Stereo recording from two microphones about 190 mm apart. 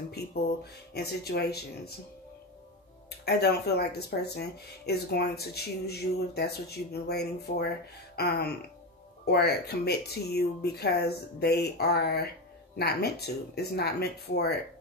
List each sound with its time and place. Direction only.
0.9 s speech: 60° left (ahead or behind)
3.3 s speech: 60° left (ahead or behind)